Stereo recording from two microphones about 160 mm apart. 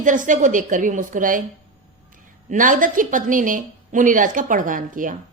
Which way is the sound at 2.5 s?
55° right (ahead or behind).